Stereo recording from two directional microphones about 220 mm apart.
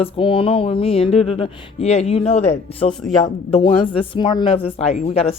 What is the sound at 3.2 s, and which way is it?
A woman's voice, 30° left (ahead or behind).